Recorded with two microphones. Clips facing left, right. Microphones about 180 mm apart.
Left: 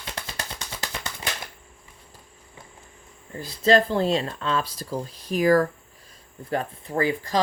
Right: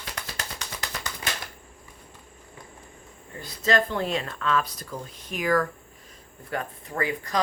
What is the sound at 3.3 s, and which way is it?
Speech, 30° left (ahead or behind).